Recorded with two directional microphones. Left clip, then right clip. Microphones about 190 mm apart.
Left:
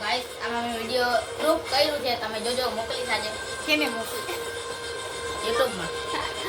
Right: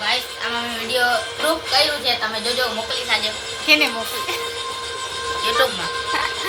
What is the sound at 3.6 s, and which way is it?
Speech, 15° right (ahead or behind).